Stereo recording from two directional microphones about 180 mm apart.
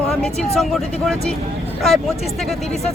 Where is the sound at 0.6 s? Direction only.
Centre (ahead or behind).